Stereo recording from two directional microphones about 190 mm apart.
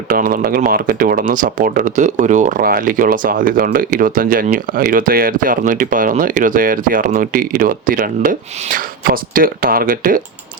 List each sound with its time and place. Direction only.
0.1 s speech: 50° right (ahead or behind)